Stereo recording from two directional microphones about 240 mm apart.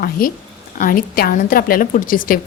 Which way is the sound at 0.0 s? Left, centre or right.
Left.